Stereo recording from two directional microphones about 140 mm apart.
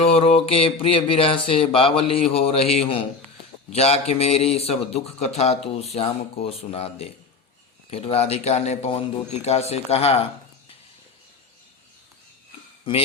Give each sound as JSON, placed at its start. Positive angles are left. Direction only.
{"t": 0.0, "sound": "mantra", "side_deg": 45}
{"t": 1.5, "sound": "speech", "side_deg": 40}
{"t": 12.9, "sound": "mantra", "side_deg": 40}